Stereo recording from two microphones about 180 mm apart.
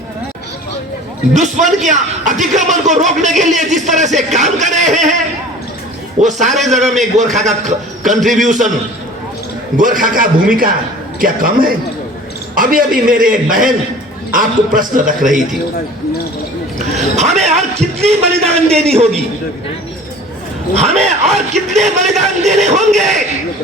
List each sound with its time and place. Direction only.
1.4 s a man's voice: 40° right (ahead or behind)
9.7 s a man's voice: 50° right (ahead or behind)
16.7 s a man's voice: 40° right (ahead or behind)
20.7 s a man's voice: 35° right (ahead or behind)